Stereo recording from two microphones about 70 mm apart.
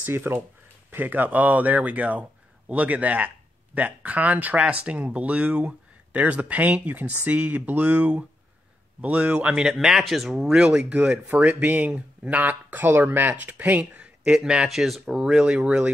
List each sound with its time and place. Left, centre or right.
0.0 s speech: right; by 9.7 s centre
9.7 s speech: centre